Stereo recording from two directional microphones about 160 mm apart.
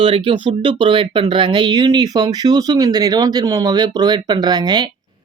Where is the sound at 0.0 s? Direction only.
35° right (ahead or behind).